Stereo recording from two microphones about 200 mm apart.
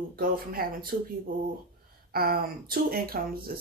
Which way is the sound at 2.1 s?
50° right (ahead or behind).